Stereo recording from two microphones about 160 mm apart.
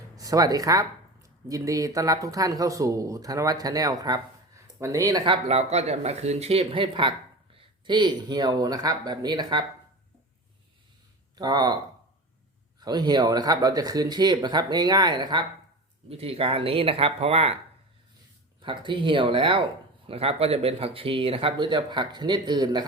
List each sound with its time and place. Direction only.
0.2 s speech: 20° right (ahead or behind)
11.3 s speech: 25° right (ahead or behind)
12.8 s speech: 25° right (ahead or behind)
16.0 s speech: 40° right (ahead or behind)
18.6 s speech: 30° right (ahead or behind)